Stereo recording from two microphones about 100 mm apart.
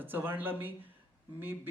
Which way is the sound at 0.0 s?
20° right (ahead or behind).